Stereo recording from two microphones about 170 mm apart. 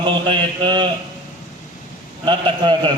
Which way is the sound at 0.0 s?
30° right (ahead or behind).